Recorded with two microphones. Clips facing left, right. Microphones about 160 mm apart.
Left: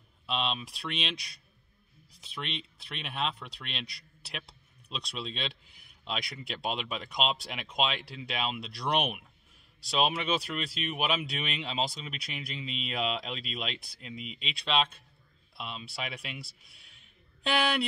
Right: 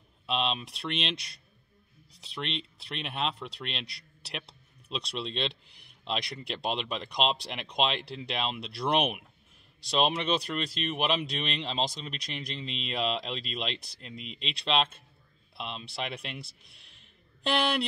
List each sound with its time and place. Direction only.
0.3 s speech: centre (ahead or behind)